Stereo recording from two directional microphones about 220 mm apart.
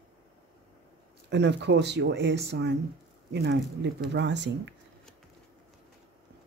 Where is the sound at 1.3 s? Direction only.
50° right (ahead or behind).